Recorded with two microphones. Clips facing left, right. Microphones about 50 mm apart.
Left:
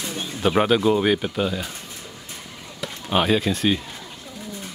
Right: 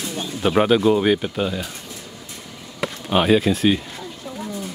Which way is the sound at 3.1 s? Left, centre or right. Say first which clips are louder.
Right 3 dB; centre.